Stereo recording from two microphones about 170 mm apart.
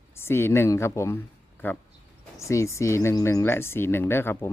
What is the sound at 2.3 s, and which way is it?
Speech, 15° left (ahead or behind).